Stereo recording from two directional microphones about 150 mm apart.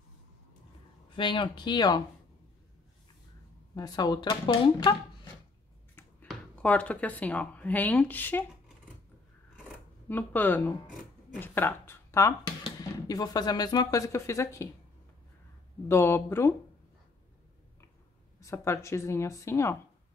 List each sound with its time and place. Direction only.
1.1 s speech: 35° left (ahead or behind)
3.7 s speech: 25° left (ahead or behind)
6.2 s speech: 10° left (ahead or behind)
10.0 s speech: 10° left (ahead or behind)
15.9 s speech: 15° left (ahead or behind)
18.4 s speech: 20° left (ahead or behind)